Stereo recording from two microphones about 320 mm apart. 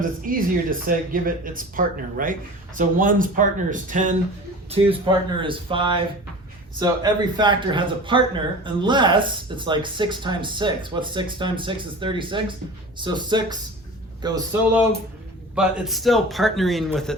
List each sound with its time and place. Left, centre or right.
0.0 s speech: right
15.5 s a man's voice: centre